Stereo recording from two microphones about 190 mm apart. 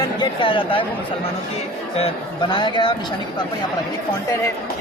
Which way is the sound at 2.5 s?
25° left (ahead or behind).